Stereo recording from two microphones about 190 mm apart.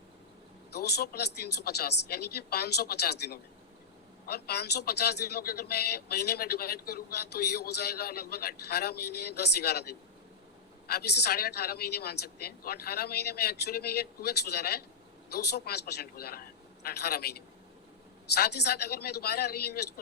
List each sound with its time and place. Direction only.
0.7 s a man's voice: 60° left (ahead or behind)
18.3 s a man's voice: 60° left (ahead or behind)